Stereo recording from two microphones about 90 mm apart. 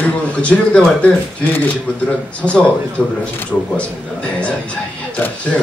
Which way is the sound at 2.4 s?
15° right (ahead or behind).